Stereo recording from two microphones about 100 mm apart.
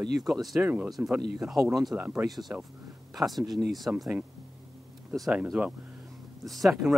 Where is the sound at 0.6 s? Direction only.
10° right (ahead or behind).